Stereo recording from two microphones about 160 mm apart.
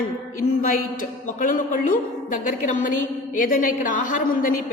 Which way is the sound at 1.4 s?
55° left (ahead or behind).